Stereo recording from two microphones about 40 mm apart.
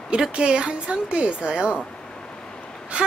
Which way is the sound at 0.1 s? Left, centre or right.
Right.